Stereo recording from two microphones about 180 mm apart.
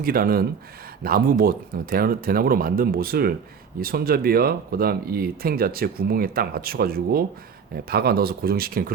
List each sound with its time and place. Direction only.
0.0 s speech: 55° right (ahead or behind)